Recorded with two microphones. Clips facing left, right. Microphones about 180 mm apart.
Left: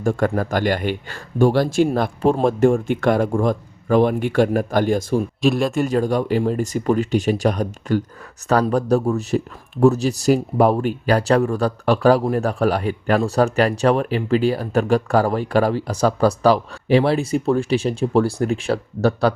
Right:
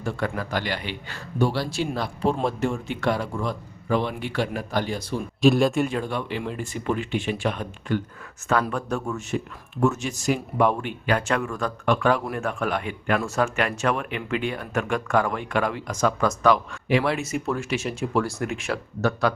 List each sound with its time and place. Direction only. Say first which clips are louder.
0.0 s speech: left 8 dB; 45° left (ahead or behind)
5.4 s speech: right 2 dB; centre (ahead or behind)
5.9 s speech: left 9 dB; 40° left (ahead or behind)